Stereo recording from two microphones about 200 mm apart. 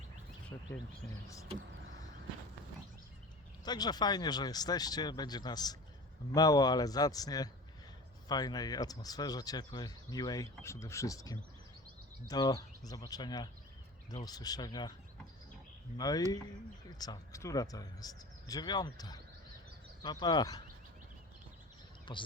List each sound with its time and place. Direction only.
1.5 s vehicle: 40° right (ahead or behind)
3.6 s speech: 20° left (ahead or behind)
16.0 s speech: 20° left (ahead or behind)
22.1 s speech: 25° left (ahead or behind)